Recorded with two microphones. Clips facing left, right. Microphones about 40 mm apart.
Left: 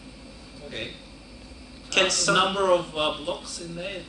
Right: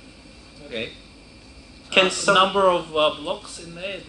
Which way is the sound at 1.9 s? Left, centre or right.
Centre.